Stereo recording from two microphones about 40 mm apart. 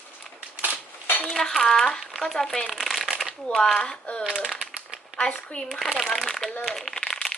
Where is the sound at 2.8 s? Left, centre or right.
Centre.